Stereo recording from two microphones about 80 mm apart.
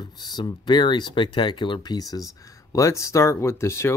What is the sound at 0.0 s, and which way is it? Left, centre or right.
Speech, left.